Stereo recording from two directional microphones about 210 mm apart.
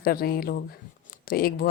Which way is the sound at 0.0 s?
45° left (ahead or behind).